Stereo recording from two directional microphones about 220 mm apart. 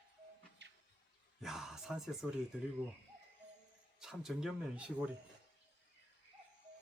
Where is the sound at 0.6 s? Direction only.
50° right (ahead or behind).